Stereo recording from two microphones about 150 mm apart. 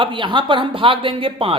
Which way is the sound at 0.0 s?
35° right (ahead or behind).